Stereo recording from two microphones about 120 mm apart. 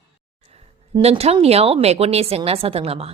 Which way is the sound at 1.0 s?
60° right (ahead or behind).